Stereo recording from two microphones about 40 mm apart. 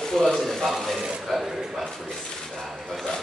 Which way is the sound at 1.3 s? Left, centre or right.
Centre.